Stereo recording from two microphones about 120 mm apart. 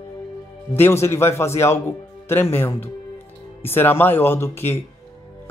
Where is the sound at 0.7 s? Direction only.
20° left (ahead or behind).